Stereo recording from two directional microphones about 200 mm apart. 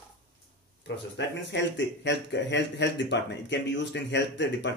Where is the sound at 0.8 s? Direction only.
60° left (ahead or behind).